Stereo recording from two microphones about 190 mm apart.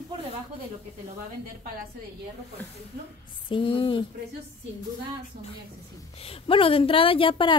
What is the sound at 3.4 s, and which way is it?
Speech, 25° left (ahead or behind).